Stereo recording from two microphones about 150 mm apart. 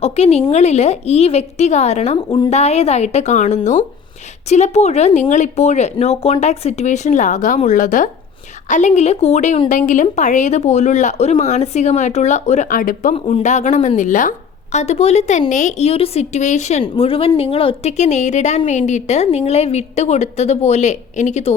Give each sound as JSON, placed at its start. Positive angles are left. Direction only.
{"t": 0.0, "sound": "a woman's voice", "side_deg": 45}
{"t": 13.1, "sound": "speech", "side_deg": 40}
{"t": 16.8, "sound": "speech", "side_deg": 35}